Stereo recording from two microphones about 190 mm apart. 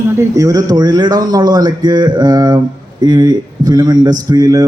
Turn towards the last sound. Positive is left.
turn(degrees=-20)  # may be behind; listen again after turning